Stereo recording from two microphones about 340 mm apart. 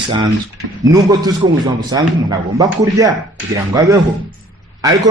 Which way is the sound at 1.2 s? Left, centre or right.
Centre.